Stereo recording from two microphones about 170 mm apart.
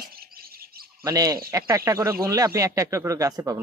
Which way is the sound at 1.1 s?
20° right (ahead or behind).